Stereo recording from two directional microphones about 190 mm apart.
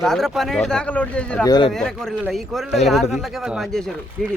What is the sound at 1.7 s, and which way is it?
Speech, centre (ahead or behind).